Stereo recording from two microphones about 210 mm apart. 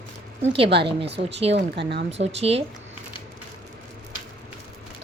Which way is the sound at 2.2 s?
30° right (ahead or behind).